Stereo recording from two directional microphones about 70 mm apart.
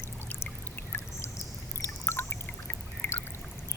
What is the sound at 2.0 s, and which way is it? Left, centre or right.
Pour, left.